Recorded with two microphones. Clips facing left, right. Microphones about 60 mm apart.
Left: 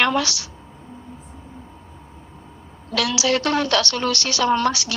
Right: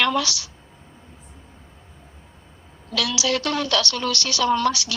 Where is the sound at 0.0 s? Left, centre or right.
Left.